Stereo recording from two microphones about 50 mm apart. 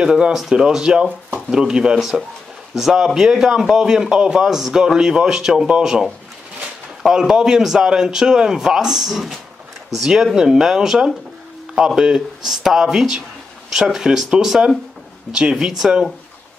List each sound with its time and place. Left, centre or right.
0.0 s a man's voice: centre
15.3 s speech: centre
15.8 s a man's voice: centre